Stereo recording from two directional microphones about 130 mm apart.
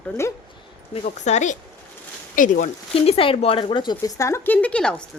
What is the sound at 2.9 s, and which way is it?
A woman's voice, 50° left (ahead or behind).